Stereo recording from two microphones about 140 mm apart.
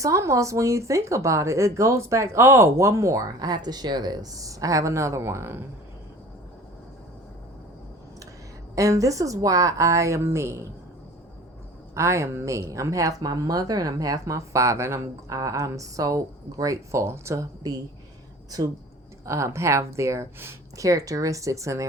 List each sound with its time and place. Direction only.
0.0 s a woman's voice: 20° right (ahead or behind)
8.7 s a woman's voice: 25° right (ahead or behind)
11.9 s a woman's voice: 20° right (ahead or behind)